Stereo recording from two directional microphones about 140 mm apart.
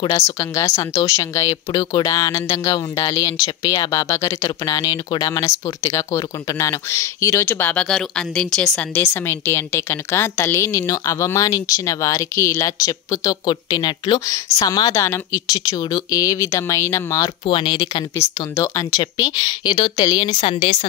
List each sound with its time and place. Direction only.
0.1 s speech: 25° left (ahead or behind); by 9.0 s 5° left (ahead or behind)
9.0 s speech: 20° left (ahead or behind)
17.5 s speech: 35° left (ahead or behind)
18.1 s speech: 20° left (ahead or behind); by 20.7 s 40° left (ahead or behind)